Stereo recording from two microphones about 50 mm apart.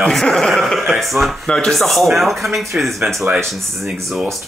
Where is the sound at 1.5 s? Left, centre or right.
Centre.